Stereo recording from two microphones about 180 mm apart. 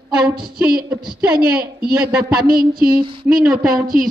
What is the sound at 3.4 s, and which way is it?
Speech, 5° right (ahead or behind).